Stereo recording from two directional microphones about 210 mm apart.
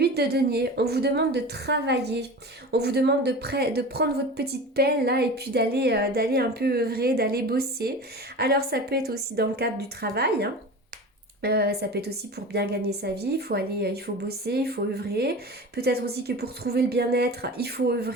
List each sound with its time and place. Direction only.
0.0 s speech: 50° right (ahead or behind)